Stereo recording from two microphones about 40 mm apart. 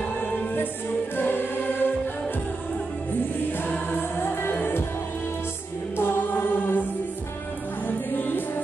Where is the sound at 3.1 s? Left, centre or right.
Left.